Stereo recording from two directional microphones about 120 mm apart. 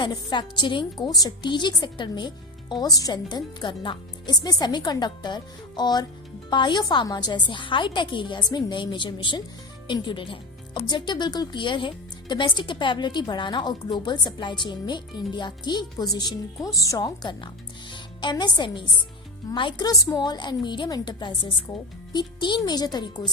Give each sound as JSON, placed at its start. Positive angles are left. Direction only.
{"t": 0.0, "sound": "a woman's voice", "side_deg": 40}
{"t": 19.9, "sound": "a woman's voice", "side_deg": 30}